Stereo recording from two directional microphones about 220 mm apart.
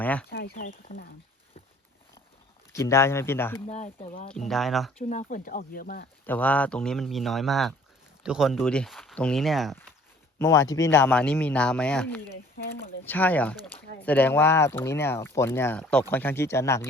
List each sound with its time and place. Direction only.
0.0 s speech: 5° left (ahead or behind)
0.3 s speech: 45° left (ahead or behind)
2.7 s speech: 15° left (ahead or behind)
3.7 s speech: 30° left (ahead or behind)
4.3 s speech: centre (ahead or behind)
4.9 s speech: 35° left (ahead or behind)
6.2 s speech: 5° left (ahead or behind)
10.3 s speech: 15° left (ahead or behind)